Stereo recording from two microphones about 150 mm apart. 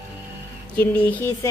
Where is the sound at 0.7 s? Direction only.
10° left (ahead or behind).